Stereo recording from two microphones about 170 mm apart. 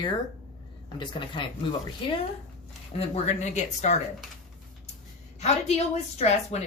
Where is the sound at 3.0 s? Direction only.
40° left (ahead or behind).